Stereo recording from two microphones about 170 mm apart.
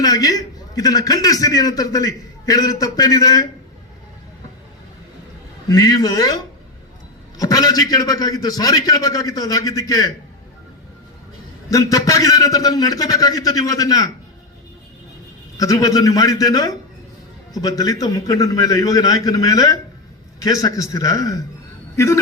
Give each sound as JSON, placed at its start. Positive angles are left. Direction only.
{"t": 0.0, "sound": "a man's voice", "side_deg": 20}
{"t": 5.6, "sound": "a man's voice", "side_deg": 20}
{"t": 11.7, "sound": "a man's voice", "side_deg": 20}
{"t": 15.5, "sound": "a man's voice", "side_deg": 20}